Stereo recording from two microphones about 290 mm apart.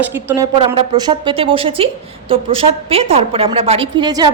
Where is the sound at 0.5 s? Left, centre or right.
Centre.